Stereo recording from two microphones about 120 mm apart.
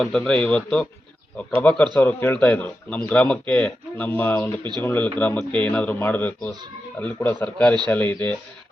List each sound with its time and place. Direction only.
0.0 s speech: 5° left (ahead or behind)
2.0 s speech: 20° left (ahead or behind)